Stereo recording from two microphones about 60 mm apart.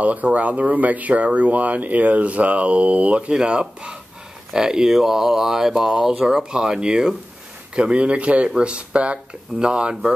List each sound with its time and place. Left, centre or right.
0.0 s speech: right